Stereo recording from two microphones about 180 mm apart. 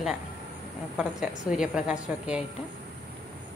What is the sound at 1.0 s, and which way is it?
A woman's voice, 5° right (ahead or behind).